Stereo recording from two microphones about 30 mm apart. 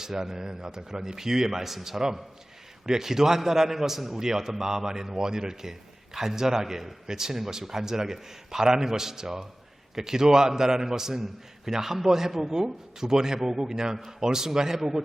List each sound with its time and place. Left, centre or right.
0.0 s a man's voice: centre